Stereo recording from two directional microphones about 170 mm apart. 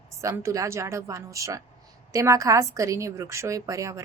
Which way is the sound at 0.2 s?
15° right (ahead or behind).